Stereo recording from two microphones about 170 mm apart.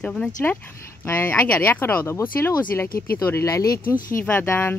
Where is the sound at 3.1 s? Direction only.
15° left (ahead or behind).